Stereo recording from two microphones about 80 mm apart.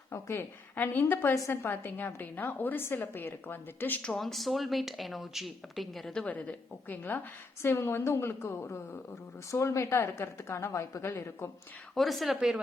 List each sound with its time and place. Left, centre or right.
0.1 s a woman's voice: left
4.2 s speech: centre
6.2 s a woman's voice: centre
11.9 s speech: centre